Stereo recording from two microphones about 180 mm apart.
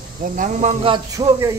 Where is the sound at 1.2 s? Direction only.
30° right (ahead or behind).